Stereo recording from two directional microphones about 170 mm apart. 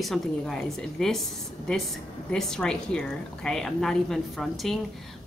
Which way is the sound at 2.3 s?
5° left (ahead or behind).